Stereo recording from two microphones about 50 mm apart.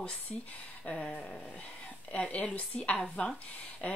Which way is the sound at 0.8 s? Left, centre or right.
Left.